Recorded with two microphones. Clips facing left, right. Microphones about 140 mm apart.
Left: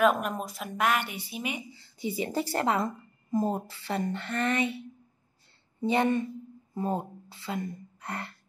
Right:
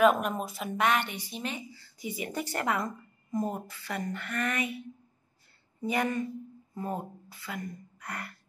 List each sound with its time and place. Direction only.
0.0 s speech: centre (ahead or behind); by 8.3 s 25° left (ahead or behind)